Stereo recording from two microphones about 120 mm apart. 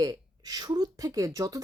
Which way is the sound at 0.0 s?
30° right (ahead or behind).